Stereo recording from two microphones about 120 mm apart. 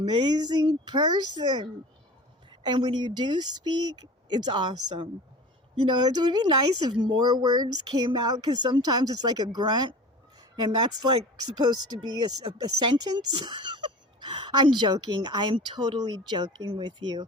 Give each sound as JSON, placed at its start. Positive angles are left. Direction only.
{"t": 0.0, "sound": "speech", "side_deg": -40}